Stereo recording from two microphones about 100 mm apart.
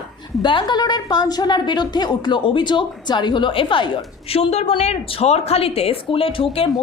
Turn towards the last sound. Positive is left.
turn(degrees=65)  # may be behind; listen again after turning